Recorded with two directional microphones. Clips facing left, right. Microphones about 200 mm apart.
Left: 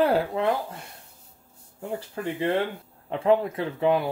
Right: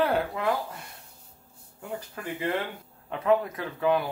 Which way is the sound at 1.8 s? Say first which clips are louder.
Left 5 dB; 30° left (ahead or behind).